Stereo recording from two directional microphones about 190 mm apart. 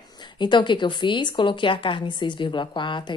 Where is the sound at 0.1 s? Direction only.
25° left (ahead or behind).